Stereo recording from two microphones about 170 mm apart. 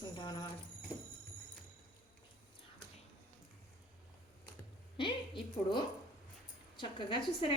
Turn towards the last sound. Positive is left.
turn(degrees=30)  # may be behind; listen again after turning